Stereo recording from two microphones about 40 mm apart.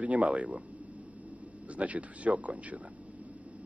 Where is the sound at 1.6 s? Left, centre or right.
Right.